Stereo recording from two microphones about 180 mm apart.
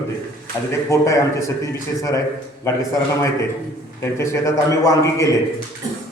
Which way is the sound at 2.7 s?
15° left (ahead or behind).